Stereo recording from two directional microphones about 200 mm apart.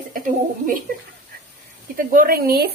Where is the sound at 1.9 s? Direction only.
45° right (ahead or behind).